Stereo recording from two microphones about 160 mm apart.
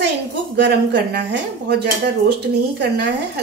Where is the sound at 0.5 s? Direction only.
90° right.